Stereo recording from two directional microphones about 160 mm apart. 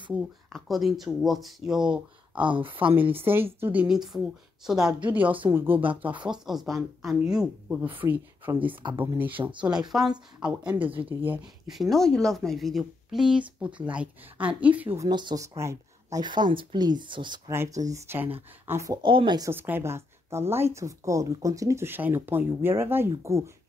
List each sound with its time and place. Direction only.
0.5 s speech: centre (ahead or behind)
2.4 s speech: 30° right (ahead or behind)
3.3 s speech: 15° right (ahead or behind)
9.4 s speech: 30° right (ahead or behind)
9.7 s speech: 5° right (ahead or behind)
11.7 s speech: centre (ahead or behind)
15.0 s speech: 25° right (ahead or behind)
17.5 s speech: 20° right (ahead or behind)
19.0 s speech: 30° right (ahead or behind)
19.5 s speech: 15° right (ahead or behind)